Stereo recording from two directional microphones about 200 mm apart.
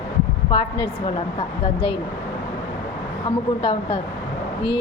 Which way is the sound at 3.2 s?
25° left (ahead or behind).